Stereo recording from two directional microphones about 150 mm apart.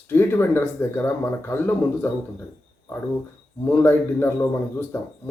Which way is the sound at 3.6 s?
15° left (ahead or behind).